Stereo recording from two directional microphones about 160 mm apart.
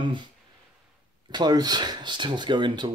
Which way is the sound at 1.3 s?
25° right (ahead or behind).